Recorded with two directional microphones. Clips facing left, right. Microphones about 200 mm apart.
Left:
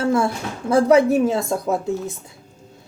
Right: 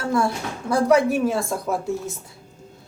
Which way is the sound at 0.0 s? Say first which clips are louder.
Left 3 dB; 25° left (ahead or behind).